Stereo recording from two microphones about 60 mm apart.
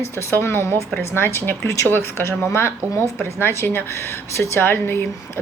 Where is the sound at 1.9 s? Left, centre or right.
Left.